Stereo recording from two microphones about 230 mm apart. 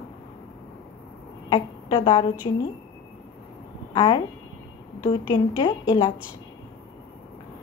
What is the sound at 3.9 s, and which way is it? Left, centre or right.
Speech, centre.